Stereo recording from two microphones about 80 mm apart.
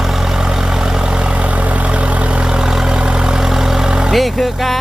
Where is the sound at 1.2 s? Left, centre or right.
Centre.